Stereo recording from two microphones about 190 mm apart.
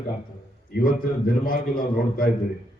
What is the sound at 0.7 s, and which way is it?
A man's voice, 45° left (ahead or behind).